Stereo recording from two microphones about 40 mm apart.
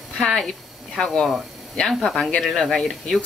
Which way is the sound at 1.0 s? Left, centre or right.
Centre.